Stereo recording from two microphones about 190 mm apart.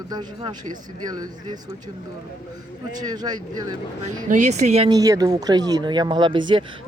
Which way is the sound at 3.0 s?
20° right (ahead or behind).